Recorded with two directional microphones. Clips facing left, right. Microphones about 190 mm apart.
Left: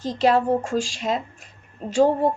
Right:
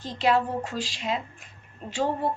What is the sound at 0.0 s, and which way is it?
A woman's voice, 40° left (ahead or behind).